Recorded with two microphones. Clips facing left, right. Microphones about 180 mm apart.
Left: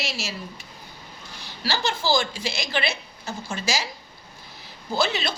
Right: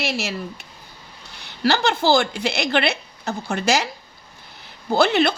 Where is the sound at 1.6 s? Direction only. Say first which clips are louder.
Right 7 dB; 65° right (ahead or behind).